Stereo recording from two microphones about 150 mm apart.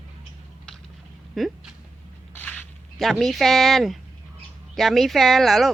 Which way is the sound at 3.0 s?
Centre (ahead or behind).